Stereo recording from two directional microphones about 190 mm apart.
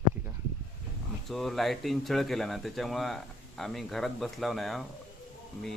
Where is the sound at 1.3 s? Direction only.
Centre (ahead or behind).